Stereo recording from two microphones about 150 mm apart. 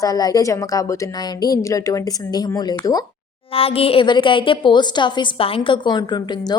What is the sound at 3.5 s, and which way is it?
A woman's voice, 40° left (ahead or behind).